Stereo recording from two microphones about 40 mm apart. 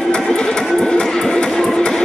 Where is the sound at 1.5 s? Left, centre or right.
Centre.